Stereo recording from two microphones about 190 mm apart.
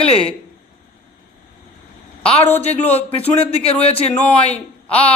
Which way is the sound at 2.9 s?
30° left (ahead or behind).